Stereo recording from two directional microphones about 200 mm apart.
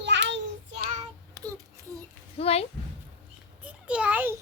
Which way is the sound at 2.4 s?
30° left (ahead or behind).